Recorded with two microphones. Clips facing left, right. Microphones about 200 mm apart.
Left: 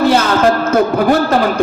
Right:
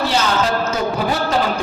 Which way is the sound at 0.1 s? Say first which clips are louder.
Left 7 dB; 55° left (ahead or behind).